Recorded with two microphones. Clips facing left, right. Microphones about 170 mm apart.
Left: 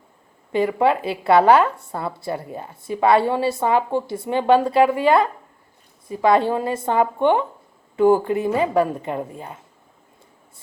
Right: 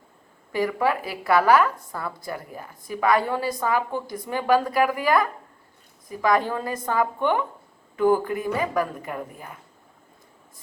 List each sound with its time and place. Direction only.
0.5 s speech: 25° left (ahead or behind)